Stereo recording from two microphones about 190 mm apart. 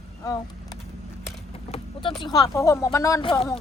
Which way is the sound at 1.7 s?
25° left (ahead or behind).